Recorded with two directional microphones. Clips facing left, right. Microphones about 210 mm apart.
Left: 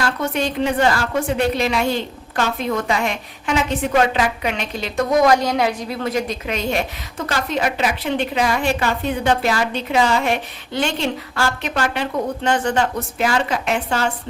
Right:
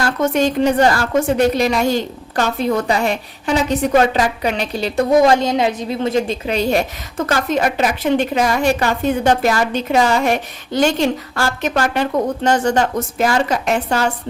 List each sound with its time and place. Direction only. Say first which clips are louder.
0.0 s a woman's voice: right 5 dB; 45° right (ahead or behind)